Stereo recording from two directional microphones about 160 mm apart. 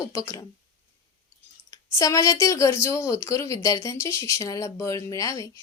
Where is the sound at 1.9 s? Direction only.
20° left (ahead or behind).